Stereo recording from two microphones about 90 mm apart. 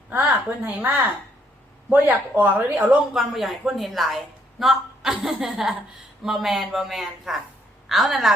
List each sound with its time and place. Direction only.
0.1 s a woman's voice: 20° right (ahead or behind)
2.4 s speech: 15° right (ahead or behind)
3.1 s speech: 5° right (ahead or behind)